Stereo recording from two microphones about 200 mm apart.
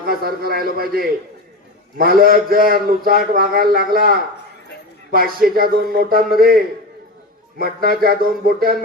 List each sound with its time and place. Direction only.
0.0 s a man's voice: 50° right (ahead or behind)